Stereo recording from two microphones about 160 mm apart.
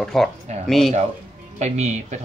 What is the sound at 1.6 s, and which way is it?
Speech, 45° right (ahead or behind).